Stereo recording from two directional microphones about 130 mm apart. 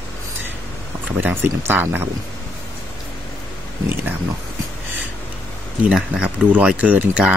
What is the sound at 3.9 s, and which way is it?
Speech, 15° right (ahead or behind).